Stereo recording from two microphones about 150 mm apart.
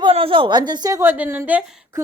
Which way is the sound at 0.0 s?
35° right (ahead or behind).